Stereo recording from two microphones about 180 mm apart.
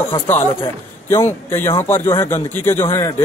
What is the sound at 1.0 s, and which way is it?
Speech, 15° left (ahead or behind).